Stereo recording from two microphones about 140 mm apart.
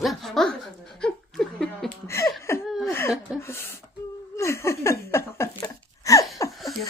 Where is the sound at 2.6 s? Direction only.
Centre (ahead or behind).